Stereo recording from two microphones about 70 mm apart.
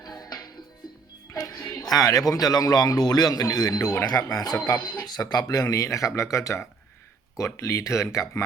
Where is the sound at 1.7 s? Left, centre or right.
Left.